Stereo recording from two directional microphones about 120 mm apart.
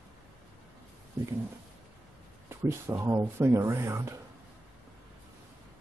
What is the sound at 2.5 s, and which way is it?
Speech, 20° right (ahead or behind).